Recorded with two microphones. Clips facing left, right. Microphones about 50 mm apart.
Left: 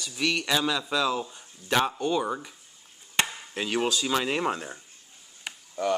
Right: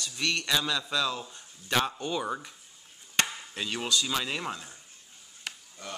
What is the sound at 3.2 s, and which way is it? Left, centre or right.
Chop, centre.